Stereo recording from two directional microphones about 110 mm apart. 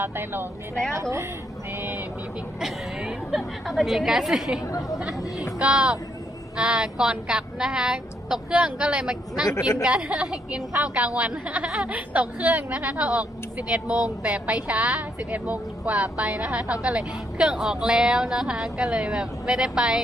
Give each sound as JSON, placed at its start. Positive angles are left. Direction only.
{"t": 0.0, "sound": "speech", "side_deg": -20}
{"t": 1.7, "sound": "vehicle", "side_deg": -20}
{"t": 2.6, "sound": "a woman's voice", "side_deg": -5}
{"t": 4.6, "sound": "speech", "side_deg": 30}
{"t": 4.9, "sound": "a woman's voice", "side_deg": -5}
{"t": 5.2, "sound": "speech", "side_deg": 30}
{"t": 5.5, "sound": "speech", "side_deg": -10}